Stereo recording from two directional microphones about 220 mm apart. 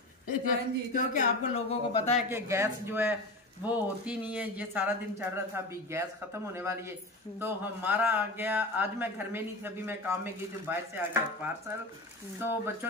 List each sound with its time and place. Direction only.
0.5 s speech: 35° left (ahead or behind)
2.1 s speech: 10° right (ahead or behind)